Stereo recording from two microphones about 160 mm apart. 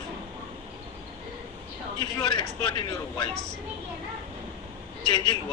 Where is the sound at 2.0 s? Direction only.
30° left (ahead or behind).